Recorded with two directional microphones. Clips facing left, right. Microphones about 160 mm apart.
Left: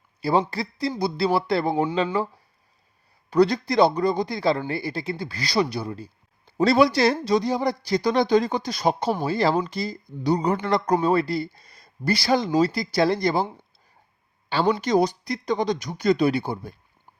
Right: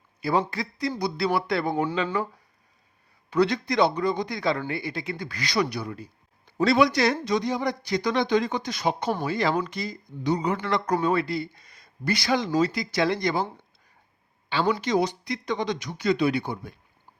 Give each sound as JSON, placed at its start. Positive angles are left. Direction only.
{"t": 0.2, "sound": "speech", "side_deg": 30}
{"t": 3.2, "sound": "speech", "side_deg": 40}
{"t": 14.8, "sound": "speech", "side_deg": 40}